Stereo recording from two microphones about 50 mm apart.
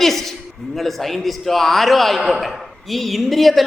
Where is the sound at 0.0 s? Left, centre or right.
Centre.